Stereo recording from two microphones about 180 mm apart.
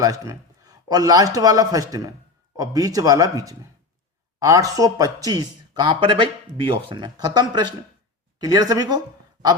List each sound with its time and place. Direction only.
0.0 s a man's voice: 20° right (ahead or behind)